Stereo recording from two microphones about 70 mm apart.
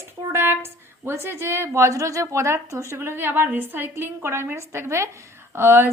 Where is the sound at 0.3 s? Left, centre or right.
Right.